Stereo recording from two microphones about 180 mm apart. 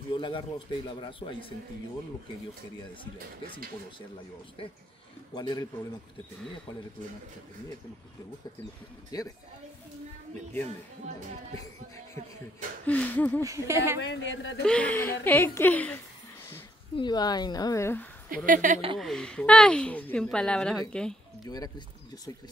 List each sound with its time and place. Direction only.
0.1 s a man's voice: 25° left (ahead or behind)
5.3 s a man's voice: 25° left (ahead or behind)
9.1 s a man's voice: 20° left (ahead or behind)
12.8 s a woman's voice: 10° left (ahead or behind)
13.4 s speech: 15° right (ahead or behind)
14.0 s speech: 90° left
14.7 s a woman's voice: 5° left (ahead or behind)
16.9 s a man's voice: 25° left (ahead or behind)
18.3 s a woman's voice: 50° right (ahead or behind)
18.9 s a woman's voice: 5° left (ahead or behind)
21.5 s a man's voice: 20° left (ahead or behind)